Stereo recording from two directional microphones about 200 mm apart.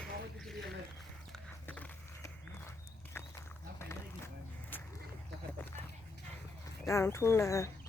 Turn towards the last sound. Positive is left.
turn(degrees=15)  # may be behind; listen again after turning